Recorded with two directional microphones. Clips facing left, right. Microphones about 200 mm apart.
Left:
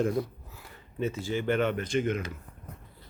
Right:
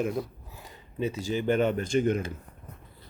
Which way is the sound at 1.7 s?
40° right (ahead or behind).